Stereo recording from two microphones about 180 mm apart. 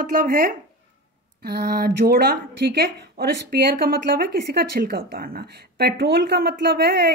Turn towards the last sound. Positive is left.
turn(degrees=-60)  # may be behind; listen again after turning